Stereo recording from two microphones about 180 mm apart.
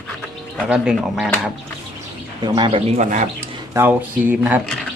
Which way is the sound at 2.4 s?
25° right (ahead or behind).